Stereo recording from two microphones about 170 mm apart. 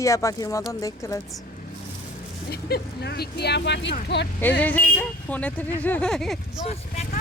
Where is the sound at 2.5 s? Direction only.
70° left (ahead or behind).